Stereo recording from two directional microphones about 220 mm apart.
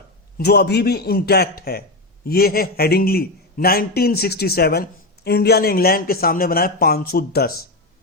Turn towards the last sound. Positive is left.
turn(degrees=45)  # may be behind; listen again after turning